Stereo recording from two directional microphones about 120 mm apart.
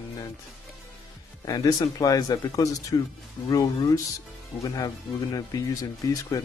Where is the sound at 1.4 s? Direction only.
30° left (ahead or behind).